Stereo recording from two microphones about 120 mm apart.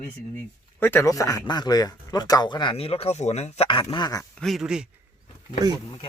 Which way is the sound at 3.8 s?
40° left (ahead or behind).